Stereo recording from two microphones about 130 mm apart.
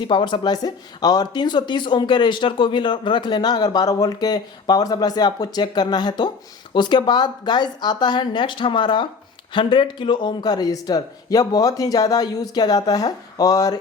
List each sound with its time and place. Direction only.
0.0 s speech: 40° left (ahead or behind)